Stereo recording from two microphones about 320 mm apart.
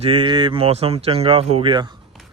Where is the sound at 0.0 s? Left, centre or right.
Centre.